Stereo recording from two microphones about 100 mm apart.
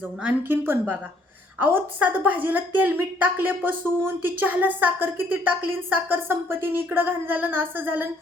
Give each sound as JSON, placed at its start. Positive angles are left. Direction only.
{"t": 0.2, "sound": "a woman's voice", "side_deg": -15}